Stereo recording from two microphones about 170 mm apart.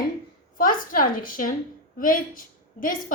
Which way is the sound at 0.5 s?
55° left (ahead or behind).